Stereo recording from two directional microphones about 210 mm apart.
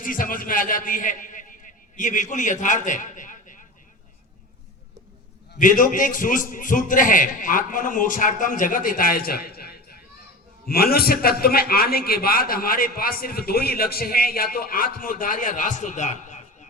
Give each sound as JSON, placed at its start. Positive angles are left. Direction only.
{"t": 0.0, "sound": "a man's voice", "side_deg": 40}
{"t": 5.5, "sound": "a man's voice", "side_deg": 40}